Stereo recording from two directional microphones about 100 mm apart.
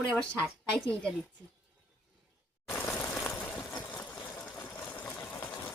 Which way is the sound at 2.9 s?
30° left (ahead or behind).